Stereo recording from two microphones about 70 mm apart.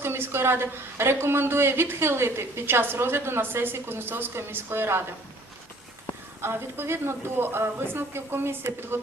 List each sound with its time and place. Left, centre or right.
0.0 s a woman's voice: right
6.4 s a woman's voice: right